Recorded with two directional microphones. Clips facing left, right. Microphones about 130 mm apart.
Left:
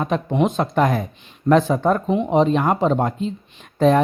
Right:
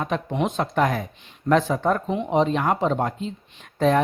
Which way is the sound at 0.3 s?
20° left (ahead or behind).